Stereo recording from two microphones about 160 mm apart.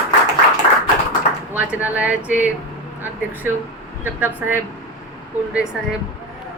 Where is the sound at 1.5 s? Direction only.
10° right (ahead or behind).